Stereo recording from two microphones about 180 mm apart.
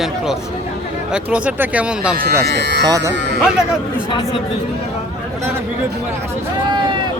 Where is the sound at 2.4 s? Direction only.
70° right (ahead or behind).